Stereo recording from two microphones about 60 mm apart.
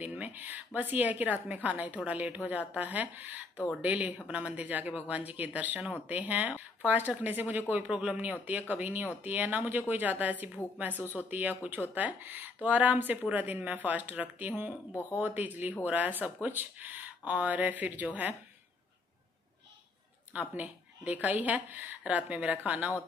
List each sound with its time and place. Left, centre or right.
0.0 s speech: right
7.9 s speech: centre
8.2 s speech: right
11.0 s speech: left
11.2 s speech: right
14.9 s speech: left
15.1 s speech: right
20.3 s speech: right